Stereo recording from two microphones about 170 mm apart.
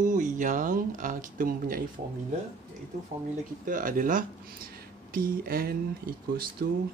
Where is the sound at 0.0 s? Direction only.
45° right (ahead or behind).